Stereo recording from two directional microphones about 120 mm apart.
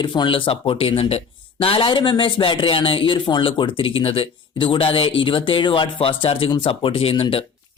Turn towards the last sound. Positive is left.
turn(degrees=50)  # may be behind; listen again after turning